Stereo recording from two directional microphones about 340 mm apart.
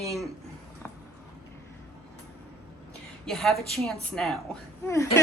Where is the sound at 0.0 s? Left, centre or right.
Centre.